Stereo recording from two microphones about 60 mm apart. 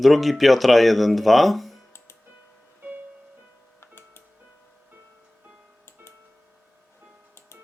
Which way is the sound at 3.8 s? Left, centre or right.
Left.